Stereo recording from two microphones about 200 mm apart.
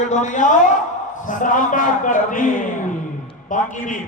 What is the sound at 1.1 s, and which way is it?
A man's voice, 40° left (ahead or behind).